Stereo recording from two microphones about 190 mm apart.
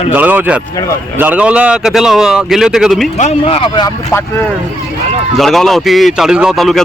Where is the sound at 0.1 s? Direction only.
10° right (ahead or behind).